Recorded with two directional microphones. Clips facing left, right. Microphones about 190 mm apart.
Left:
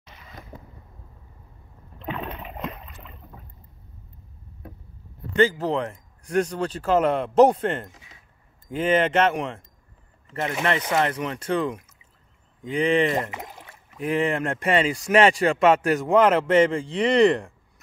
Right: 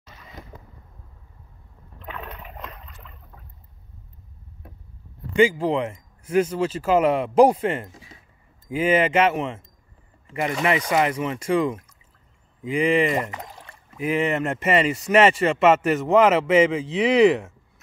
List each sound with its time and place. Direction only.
2.0 s boat: 25° left (ahead or behind)
5.3 s speech: 10° right (ahead or behind)
7.9 s a sound: 35° right (ahead or behind)
8.6 s speech: 5° right (ahead or behind)
10.9 s speech: 10° right (ahead or behind)
13.3 s a sound: 10° left (ahead or behind)
13.9 s speech: 5° right (ahead or behind)